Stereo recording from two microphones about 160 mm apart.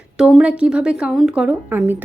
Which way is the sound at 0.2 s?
5° right (ahead or behind).